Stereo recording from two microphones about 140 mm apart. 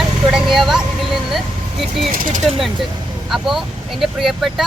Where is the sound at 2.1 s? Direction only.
75° right (ahead or behind).